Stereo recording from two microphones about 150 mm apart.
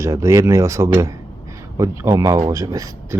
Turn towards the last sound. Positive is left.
turn(degrees=-20)  # may be behind; listen again after turning